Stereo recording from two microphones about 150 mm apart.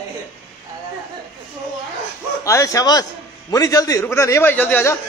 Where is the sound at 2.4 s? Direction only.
20° left (ahead or behind).